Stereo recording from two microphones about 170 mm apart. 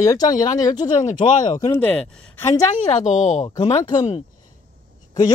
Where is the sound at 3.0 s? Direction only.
45° left (ahead or behind).